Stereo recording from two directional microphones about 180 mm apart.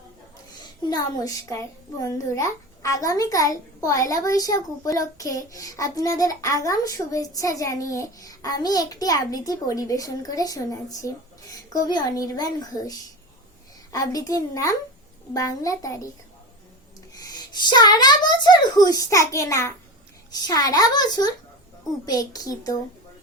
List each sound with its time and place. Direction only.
0.9 s a child's voice: 20° left (ahead or behind)
17.2 s a child's voice: 25° left (ahead or behind)